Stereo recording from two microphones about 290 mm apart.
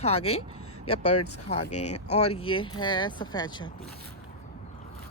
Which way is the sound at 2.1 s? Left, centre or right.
Left.